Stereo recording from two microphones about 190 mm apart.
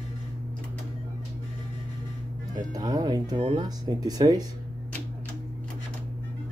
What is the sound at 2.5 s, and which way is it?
Speech, 20° right (ahead or behind).